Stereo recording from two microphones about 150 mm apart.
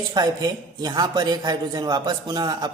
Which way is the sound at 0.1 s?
25° right (ahead or behind).